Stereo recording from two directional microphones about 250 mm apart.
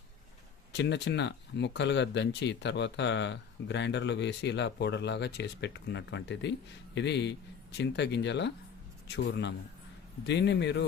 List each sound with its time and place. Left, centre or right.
0.7 s speech: left